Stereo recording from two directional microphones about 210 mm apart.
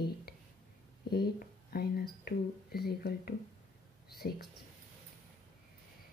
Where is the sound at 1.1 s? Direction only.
45° left (ahead or behind).